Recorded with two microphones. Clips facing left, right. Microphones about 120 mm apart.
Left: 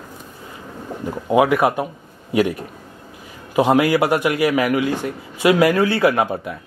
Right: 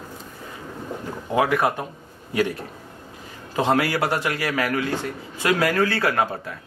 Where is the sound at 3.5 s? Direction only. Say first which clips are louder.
Left 6 dB; 15° left (ahead or behind).